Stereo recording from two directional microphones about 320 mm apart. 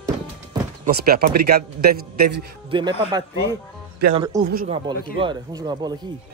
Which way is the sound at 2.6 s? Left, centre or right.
Centre.